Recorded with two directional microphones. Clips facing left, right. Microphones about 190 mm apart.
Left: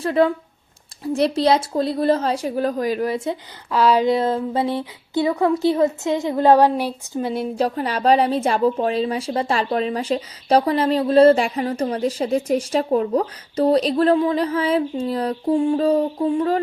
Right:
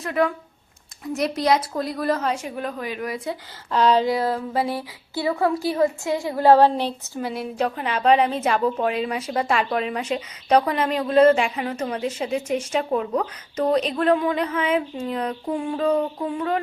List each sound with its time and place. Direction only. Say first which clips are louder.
0.0 s speech: left 5 dB; 30° left (ahead or behind)
3.7 s speech: left 1 dB; 5° left (ahead or behind)
4.0 s speech: left 4 dB; 20° left (ahead or behind)
7.5 s a woman's voice: left 3 dB; 35° left (ahead or behind)